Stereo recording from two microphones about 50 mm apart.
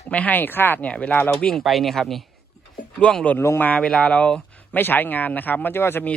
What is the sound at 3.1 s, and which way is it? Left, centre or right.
Speech, left.